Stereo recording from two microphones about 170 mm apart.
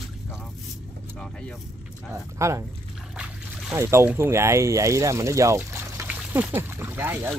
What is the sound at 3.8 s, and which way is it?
Speech, 15° right (ahead or behind).